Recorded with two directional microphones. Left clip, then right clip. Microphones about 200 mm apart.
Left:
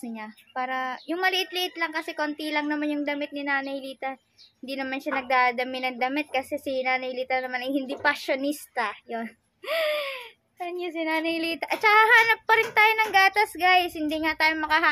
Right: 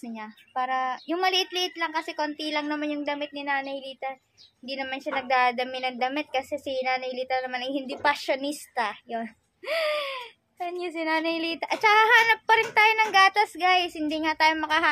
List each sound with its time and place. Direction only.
0.0 s a woman's voice: 5° right (ahead or behind)